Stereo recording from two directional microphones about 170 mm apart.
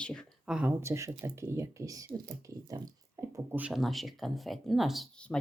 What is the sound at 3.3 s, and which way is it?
Speech, 10° right (ahead or behind).